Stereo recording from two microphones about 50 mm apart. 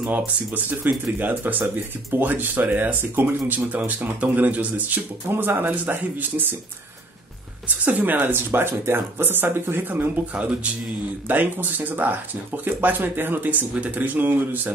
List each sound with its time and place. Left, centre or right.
0.7 s speech: right
5.3 s speech: right
7.6 s speech: right
8.2 s speech: right
10.3 s speech: right
11.2 s speech: right